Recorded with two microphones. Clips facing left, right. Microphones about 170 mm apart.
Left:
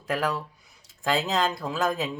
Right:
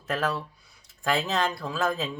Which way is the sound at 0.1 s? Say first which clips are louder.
Left 1 dB; 15° left (ahead or behind).